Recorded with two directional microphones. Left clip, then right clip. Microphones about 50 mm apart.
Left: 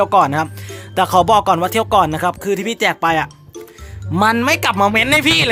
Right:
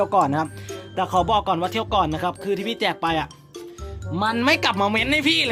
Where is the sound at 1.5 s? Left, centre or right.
Left.